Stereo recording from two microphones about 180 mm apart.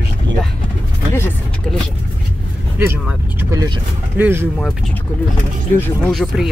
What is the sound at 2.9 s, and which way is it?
Speech, 10° right (ahead or behind).